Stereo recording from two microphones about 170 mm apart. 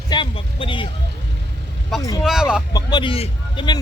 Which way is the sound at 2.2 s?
5° right (ahead or behind).